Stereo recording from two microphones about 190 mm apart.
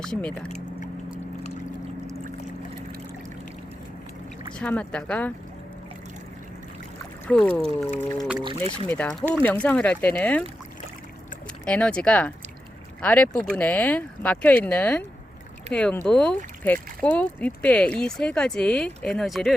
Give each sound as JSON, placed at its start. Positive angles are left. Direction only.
{"t": 0.0, "sound": "speech", "side_deg": 5}
{"t": 4.6, "sound": "speech", "side_deg": 5}
{"t": 7.3, "sound": "speech", "side_deg": 5}
{"t": 8.4, "sound": "speech", "side_deg": -25}
{"t": 8.9, "sound": "speech", "side_deg": 10}
{"t": 11.6, "sound": "speech", "side_deg": 5}